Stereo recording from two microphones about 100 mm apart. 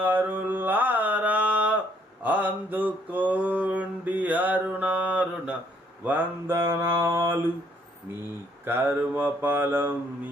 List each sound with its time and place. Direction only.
0.0 s mantra: 15° right (ahead or behind)
8.6 s mantra: 20° right (ahead or behind)